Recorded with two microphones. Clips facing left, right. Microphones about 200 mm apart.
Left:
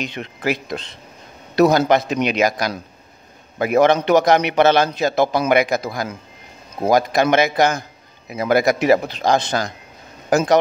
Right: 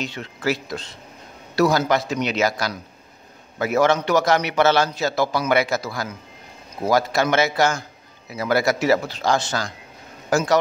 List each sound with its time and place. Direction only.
0.0 s speech: 20° left (ahead or behind)